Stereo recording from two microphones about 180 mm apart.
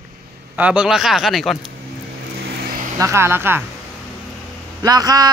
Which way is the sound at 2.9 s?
15° right (ahead or behind).